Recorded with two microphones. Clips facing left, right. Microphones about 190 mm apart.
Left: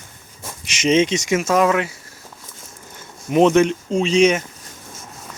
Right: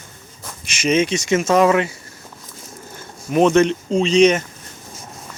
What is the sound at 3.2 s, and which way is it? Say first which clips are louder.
Speech: left 1 dB; 20° left (ahead or behind).